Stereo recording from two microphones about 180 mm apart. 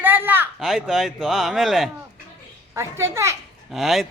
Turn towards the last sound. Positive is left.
turn(degrees=0)  # may be behind; listen again after turning